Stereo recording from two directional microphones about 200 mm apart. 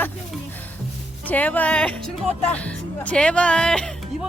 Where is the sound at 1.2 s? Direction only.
10° left (ahead or behind).